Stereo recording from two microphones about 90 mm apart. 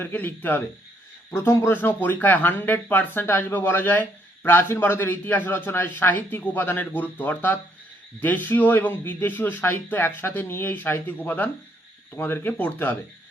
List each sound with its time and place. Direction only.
0.0 s speech: 25° left (ahead or behind)